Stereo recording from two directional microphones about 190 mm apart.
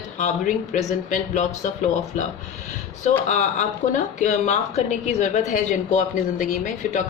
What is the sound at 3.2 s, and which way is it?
Speech, 40° left (ahead or behind).